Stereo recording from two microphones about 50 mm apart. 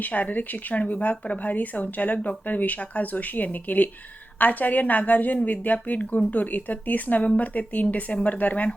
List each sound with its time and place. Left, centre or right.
0.0 s speech: left